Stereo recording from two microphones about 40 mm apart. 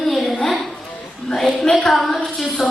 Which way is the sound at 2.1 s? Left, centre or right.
Centre.